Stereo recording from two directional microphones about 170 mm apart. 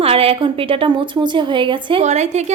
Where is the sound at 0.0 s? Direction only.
35° right (ahead or behind).